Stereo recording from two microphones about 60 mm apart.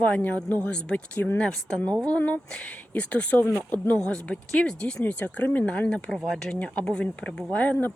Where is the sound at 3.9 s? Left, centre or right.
Centre.